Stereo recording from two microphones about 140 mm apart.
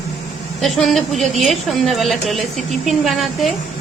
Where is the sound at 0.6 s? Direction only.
Centre (ahead or behind).